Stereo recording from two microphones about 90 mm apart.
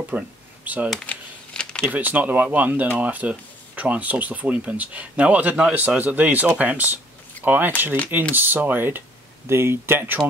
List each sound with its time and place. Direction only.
0.1 s speech: 15° right (ahead or behind)
1.0 s shuffling cards: 10° left (ahead or behind)
1.9 s speech: 20° right (ahead or behind)